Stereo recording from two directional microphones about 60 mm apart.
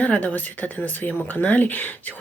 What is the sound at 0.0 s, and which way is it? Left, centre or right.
Speech, left.